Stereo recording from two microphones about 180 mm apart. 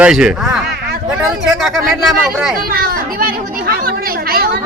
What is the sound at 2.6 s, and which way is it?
Speech, 55° right (ahead or behind).